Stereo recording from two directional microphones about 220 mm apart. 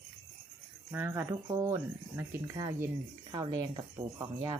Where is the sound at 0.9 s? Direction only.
10° right (ahead or behind).